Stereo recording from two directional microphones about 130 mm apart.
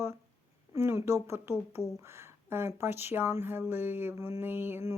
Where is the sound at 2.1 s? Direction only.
20° right (ahead or behind).